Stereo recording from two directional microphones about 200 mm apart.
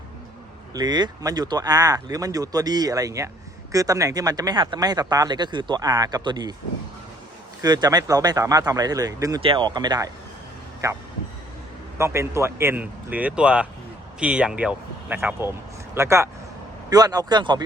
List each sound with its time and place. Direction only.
0.7 s speech: 20° right (ahead or behind)
7.6 s speech: 20° right (ahead or behind)
11.9 s a man's voice: 15° right (ahead or behind)